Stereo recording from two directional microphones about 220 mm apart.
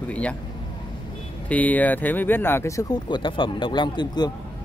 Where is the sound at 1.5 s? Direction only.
5° left (ahead or behind).